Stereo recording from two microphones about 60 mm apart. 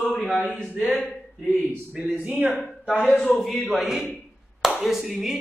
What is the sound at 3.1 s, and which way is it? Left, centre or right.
Speech, centre.